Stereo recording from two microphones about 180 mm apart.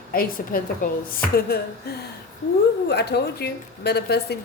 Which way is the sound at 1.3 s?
60° left (ahead or behind).